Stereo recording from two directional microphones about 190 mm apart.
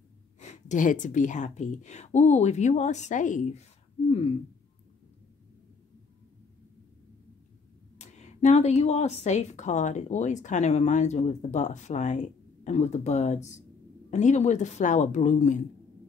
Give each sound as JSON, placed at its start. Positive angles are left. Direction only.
{"t": 0.4, "sound": "a woman's voice", "side_deg": 40}
{"t": 8.0, "sound": "a woman's voice", "side_deg": 35}